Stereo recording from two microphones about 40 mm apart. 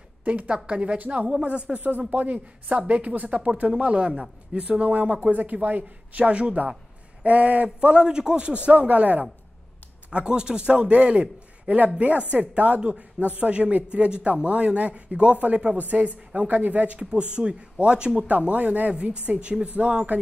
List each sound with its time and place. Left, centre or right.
0.2 s a woman's voice: right
1.8 s a woman's voice: right
2.0 s a man's voice: right
5.3 s a man's voice: right
8.5 s speech: right
10.2 s a man's voice: right
17.0 s a man's voice: right
18.5 s speech: right